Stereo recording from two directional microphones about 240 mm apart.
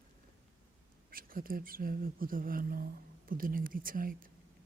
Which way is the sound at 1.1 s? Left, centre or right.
Right.